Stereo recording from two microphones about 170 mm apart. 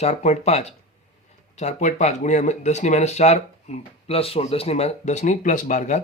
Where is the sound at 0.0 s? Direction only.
40° left (ahead or behind).